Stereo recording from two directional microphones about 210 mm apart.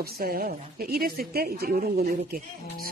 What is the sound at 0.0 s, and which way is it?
A woman's voice, 45° right (ahead or behind).